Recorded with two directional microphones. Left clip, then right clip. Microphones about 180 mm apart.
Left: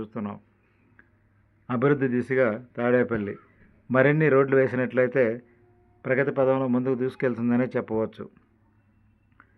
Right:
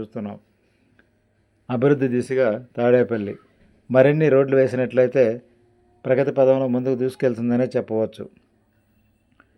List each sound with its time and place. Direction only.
0.0 s speech: 15° right (ahead or behind)
1.6 s a man's voice: 25° right (ahead or behind)